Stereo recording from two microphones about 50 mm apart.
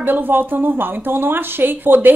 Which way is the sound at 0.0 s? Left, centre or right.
Right.